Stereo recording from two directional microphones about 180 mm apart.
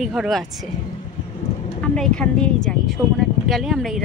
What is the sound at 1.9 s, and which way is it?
Speech, 5° left (ahead or behind).